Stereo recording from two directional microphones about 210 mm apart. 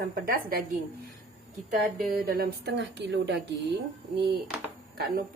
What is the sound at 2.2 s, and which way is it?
Speech, 50° right (ahead or behind).